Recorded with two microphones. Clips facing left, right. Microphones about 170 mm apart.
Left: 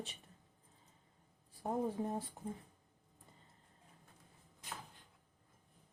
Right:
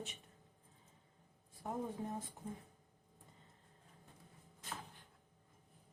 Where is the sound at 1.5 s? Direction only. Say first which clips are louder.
Left 5 dB; 35° left (ahead or behind).